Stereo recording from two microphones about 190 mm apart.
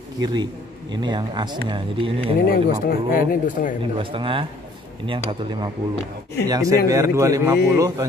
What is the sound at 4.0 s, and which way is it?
A man's voice, 25° right (ahead or behind).